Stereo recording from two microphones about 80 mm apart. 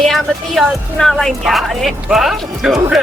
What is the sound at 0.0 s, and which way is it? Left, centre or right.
Speech, centre.